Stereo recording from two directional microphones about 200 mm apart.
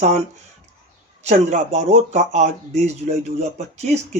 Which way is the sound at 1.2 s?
35° right (ahead or behind).